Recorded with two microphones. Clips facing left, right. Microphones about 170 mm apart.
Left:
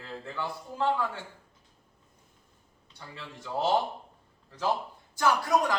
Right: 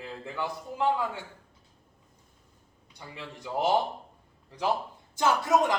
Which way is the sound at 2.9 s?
15° right (ahead or behind).